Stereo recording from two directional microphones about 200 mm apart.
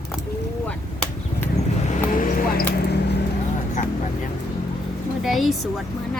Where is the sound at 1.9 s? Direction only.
40° left (ahead or behind).